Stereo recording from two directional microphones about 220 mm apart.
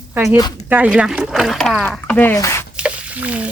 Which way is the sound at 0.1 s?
5° right (ahead or behind).